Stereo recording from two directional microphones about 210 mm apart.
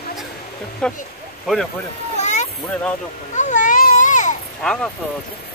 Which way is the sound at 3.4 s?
35° left (ahead or behind).